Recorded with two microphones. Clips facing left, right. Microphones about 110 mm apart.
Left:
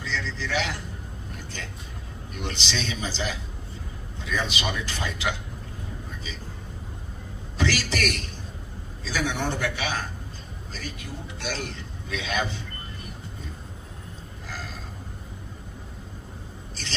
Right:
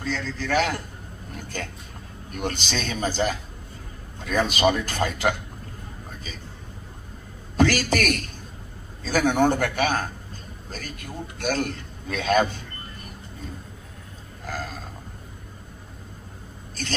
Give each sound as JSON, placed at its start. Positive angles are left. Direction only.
{"t": 0.0, "sound": "a man's voice", "side_deg": -45}
{"t": 7.5, "sound": "a man's voice", "side_deg": -50}
{"t": 14.4, "sound": "a sound", "side_deg": -50}
{"t": 16.8, "sound": "a man's voice", "side_deg": -50}